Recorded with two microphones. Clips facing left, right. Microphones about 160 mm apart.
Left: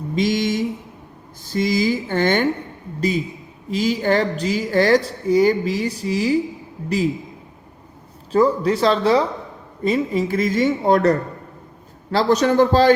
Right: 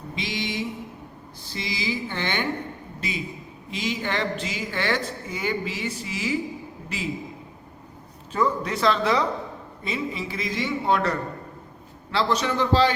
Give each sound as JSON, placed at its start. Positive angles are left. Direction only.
{"t": 0.2, "sound": "mantra", "side_deg": 45}
{"t": 1.5, "sound": "speech", "side_deg": 45}
{"t": 3.7, "sound": "a woman's voice", "side_deg": 40}
{"t": 8.3, "sound": "a woman's voice", "side_deg": 35}
{"t": 9.8, "sound": "speech", "side_deg": 45}